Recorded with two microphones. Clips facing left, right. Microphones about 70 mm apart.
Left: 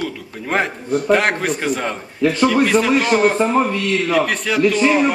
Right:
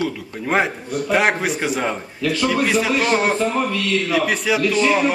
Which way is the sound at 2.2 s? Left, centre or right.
Left.